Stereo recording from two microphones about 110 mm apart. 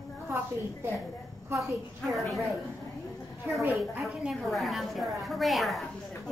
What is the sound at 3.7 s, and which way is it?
A woman's voice, centre (ahead or behind).